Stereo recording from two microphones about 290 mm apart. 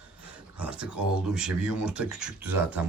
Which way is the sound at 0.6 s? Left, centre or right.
Centre.